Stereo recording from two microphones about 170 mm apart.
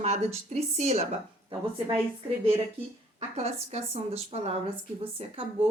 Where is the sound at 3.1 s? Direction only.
35° right (ahead or behind).